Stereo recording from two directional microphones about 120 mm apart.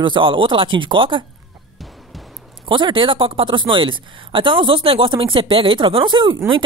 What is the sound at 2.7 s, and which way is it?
Speech, 45° right (ahead or behind).